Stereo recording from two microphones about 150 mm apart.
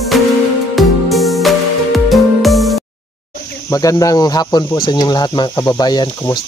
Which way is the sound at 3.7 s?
25° left (ahead or behind).